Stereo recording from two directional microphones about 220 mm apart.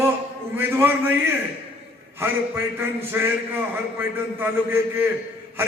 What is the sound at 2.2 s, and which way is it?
A man's voice, 10° right (ahead or behind).